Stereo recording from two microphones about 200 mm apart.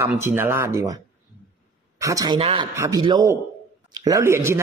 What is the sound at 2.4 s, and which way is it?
Speech, 30° right (ahead or behind).